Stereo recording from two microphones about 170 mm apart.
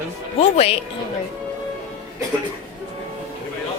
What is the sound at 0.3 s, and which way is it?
Speech, 35° left (ahead or behind).